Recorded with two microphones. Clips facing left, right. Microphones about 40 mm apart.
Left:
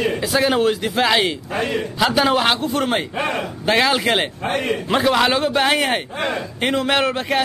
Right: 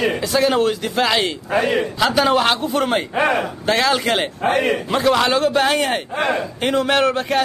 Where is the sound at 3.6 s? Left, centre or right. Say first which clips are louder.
Left 2 dB; centre.